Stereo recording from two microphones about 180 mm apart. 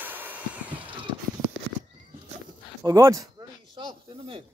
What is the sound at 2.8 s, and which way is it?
Speech, 20° right (ahead or behind).